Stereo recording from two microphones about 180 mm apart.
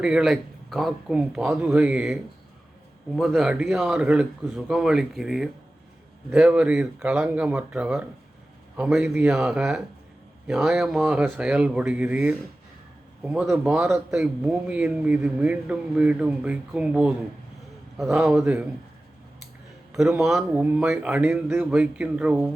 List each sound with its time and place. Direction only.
0.0 s speech: 5° right (ahead or behind)
3.2 s a man's voice: centre (ahead or behind)
19.9 s a man's voice: centre (ahead or behind)